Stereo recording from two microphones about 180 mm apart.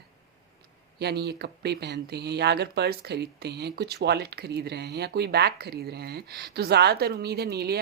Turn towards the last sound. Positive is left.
turn(degrees=-60)  # may be behind; listen again after turning